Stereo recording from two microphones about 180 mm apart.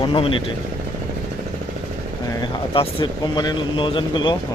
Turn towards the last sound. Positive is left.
turn(degrees=25)  # may be behind; listen again after turning